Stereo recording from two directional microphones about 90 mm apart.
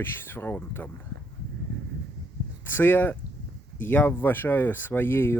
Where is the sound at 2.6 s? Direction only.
20° left (ahead or behind).